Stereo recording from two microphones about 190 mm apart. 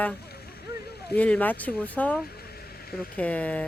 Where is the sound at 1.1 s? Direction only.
5° left (ahead or behind).